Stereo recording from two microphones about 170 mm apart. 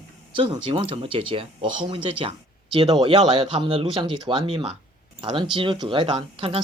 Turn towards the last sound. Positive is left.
turn(degrees=-35)  # may be behind; listen again after turning